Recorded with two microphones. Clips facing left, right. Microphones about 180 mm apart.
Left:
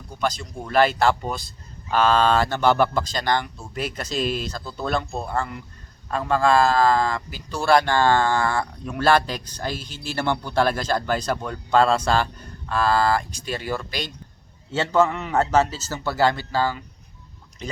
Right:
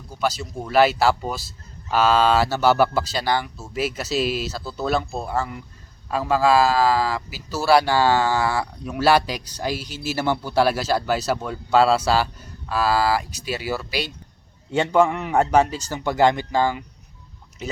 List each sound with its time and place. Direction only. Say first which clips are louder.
0.1 s speech: right 1 dB; 5° right (ahead or behind)